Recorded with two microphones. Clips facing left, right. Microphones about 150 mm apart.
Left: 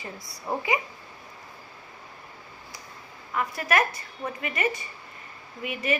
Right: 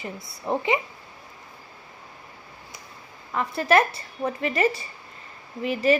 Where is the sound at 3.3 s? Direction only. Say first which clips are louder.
Right 5 dB; 30° right (ahead or behind).